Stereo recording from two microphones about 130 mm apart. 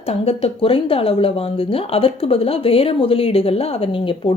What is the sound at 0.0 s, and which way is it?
Speech, 50° left (ahead or behind).